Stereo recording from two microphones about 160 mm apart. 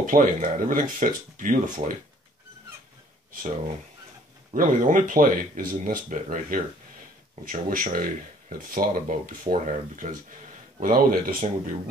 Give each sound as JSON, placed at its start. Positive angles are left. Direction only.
{"t": 0.0, "sound": "speech", "side_deg": -55}
{"t": 4.6, "sound": "speech", "side_deg": -55}
{"t": 10.8, "sound": "speech", "side_deg": -60}